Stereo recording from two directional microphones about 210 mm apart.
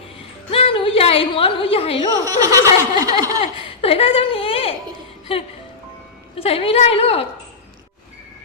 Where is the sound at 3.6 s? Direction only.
25° left (ahead or behind).